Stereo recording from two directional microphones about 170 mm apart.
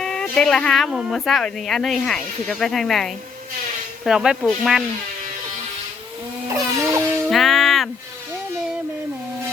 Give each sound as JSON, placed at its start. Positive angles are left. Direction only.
{"t": 0.0, "sound": "speech", "side_deg": 5}
{"t": 6.5, "sound": "music", "side_deg": -15}
{"t": 7.3, "sound": "music", "side_deg": 0}